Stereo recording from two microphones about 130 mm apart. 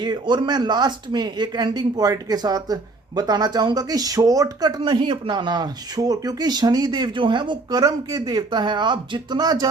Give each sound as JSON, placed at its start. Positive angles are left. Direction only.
{"t": 0.0, "sound": "speech", "side_deg": -35}